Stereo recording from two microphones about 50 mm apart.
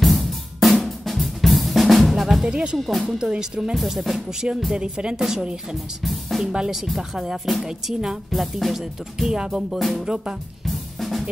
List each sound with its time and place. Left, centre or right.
0.0 s drum kit: centre
2.4 s speech: centre
2.8 s music: centre
3.2 s speech: centre
3.7 s music: centre
4.7 s speech: centre
8.3 s music: centre
9.8 s music: centre
10.0 s speech: centre
10.6 s drum kit: centre